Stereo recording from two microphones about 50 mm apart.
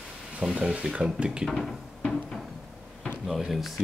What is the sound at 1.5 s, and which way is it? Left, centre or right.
Speech, centre.